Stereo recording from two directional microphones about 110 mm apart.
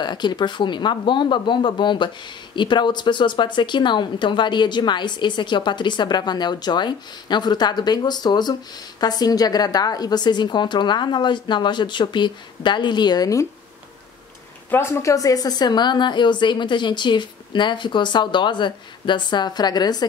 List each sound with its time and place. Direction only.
0.0 s speech: 40° left (ahead or behind)
14.7 s speech: 25° left (ahead or behind); by 20.1 s 40° left (ahead or behind)